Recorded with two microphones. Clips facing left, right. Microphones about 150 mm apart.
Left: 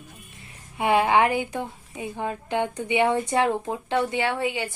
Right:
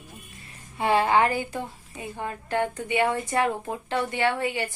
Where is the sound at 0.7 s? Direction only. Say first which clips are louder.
Left 1 dB; 15° left (ahead or behind).